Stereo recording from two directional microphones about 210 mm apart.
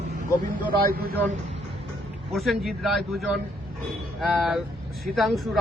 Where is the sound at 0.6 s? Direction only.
45° right (ahead or behind).